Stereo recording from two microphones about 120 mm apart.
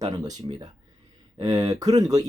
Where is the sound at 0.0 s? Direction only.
35° right (ahead or behind).